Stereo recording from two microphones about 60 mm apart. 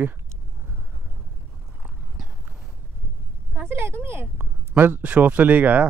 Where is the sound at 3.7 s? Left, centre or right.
Right.